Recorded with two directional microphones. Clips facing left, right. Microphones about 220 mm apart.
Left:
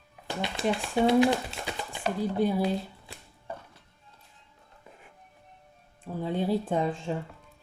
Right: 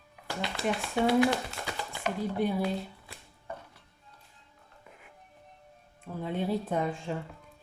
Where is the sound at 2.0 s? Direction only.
30° left (ahead or behind).